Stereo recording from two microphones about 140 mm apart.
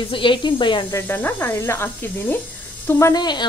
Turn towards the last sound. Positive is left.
turn(degrees=30)  # may be behind; listen again after turning